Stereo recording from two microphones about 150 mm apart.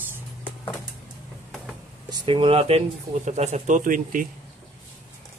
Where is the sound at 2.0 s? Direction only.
35° right (ahead or behind); by 4.3 s 65° right (ahead or behind).